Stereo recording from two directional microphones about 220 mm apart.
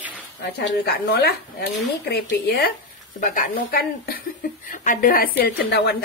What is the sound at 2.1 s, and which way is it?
A woman's voice, 45° left (ahead or behind).